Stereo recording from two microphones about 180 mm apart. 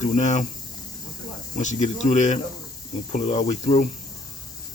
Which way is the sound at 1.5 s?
40° left (ahead or behind).